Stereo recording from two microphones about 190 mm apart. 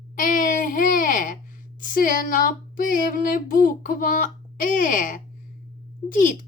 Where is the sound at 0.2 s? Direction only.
45° left (ahead or behind).